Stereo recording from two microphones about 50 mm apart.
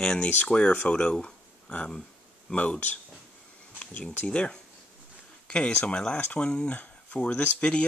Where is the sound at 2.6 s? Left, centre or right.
Left.